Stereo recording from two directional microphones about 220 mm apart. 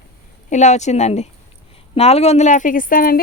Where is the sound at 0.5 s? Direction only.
30° left (ahead or behind).